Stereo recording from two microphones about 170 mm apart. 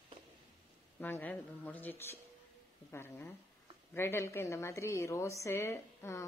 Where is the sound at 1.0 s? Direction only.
10° left (ahead or behind).